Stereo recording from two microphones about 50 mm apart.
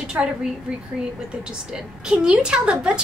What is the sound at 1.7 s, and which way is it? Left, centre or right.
A woman's voice, centre.